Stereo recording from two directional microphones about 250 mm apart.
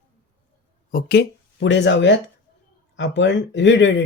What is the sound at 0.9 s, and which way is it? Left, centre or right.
Speech, left.